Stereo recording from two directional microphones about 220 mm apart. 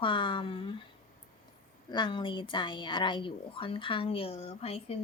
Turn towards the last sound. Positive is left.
turn(degrees=30)  # may be behind; listen again after turning